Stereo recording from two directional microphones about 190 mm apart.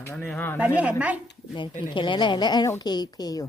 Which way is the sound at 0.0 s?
10° left (ahead or behind).